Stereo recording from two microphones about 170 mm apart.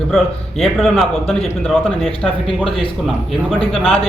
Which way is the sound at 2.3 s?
30° left (ahead or behind).